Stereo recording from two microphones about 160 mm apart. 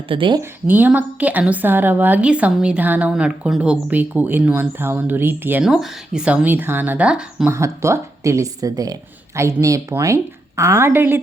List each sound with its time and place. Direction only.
0.1 s a woman's voice: 30° right (ahead or behind)
0.7 s a woman's voice: 10° right (ahead or behind)
7.5 s a woman's voice: 15° right (ahead or behind)